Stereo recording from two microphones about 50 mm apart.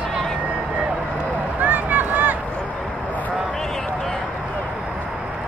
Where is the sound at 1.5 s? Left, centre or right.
Right.